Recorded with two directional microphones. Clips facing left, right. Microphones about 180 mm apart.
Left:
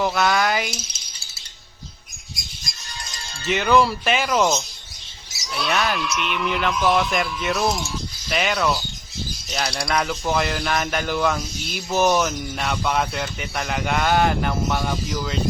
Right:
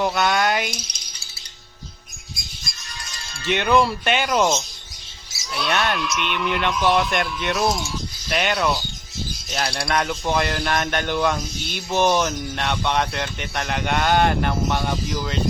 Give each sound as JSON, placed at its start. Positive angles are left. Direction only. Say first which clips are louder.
{"t": 0.0, "sound": "speech", "louder": "even", "side_deg": 0}
{"t": 3.2, "sound": "music", "louder": "even", "side_deg": 40}
{"t": 3.5, "sound": "speech", "louder": "left 1 dB", "side_deg": 0}
{"t": 5.5, "sound": "speech", "louder": "even", "side_deg": 0}